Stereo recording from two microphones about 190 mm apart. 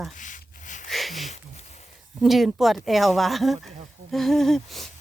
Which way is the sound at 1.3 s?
35° left (ahead or behind).